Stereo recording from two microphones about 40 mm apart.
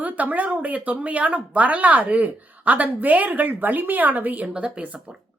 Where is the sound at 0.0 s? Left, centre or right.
Right.